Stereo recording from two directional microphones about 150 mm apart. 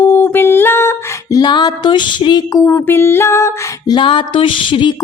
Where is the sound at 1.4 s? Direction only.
30° left (ahead or behind).